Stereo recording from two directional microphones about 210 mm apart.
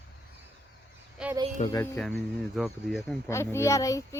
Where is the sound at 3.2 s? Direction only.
10° left (ahead or behind).